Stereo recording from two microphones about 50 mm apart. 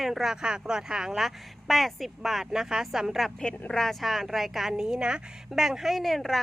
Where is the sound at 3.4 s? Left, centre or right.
Centre.